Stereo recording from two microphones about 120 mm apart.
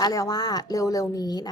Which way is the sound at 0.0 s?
30° left (ahead or behind).